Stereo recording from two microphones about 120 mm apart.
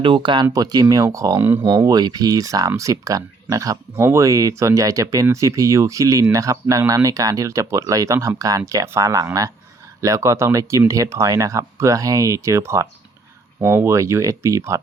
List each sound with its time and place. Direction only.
0.0 s speech: 40° right (ahead or behind); by 14.8 s 25° right (ahead or behind)